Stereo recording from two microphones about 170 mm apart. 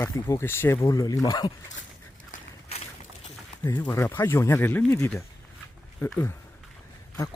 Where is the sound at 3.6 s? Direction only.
15° left (ahead or behind).